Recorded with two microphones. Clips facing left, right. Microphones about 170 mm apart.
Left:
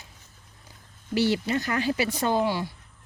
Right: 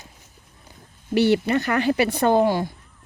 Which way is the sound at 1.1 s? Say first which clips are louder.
Right 6 dB; 60° right (ahead or behind).